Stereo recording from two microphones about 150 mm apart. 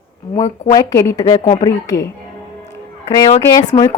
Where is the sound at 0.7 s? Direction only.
20° left (ahead or behind).